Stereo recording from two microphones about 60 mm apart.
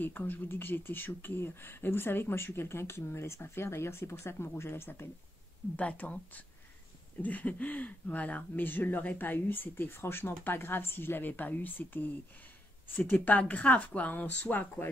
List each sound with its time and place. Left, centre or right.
0.0 s speech: left
5.8 s speech: left
13.1 s speech: left